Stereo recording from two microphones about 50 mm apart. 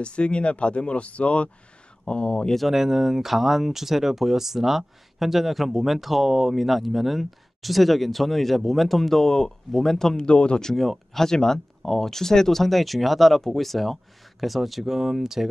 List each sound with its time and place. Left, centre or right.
0.0 s speech: left
2.5 s speech: centre; by 10.7 s left
10.7 s speech: centre